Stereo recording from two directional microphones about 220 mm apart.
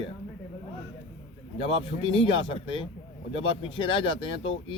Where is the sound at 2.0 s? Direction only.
20° left (ahead or behind).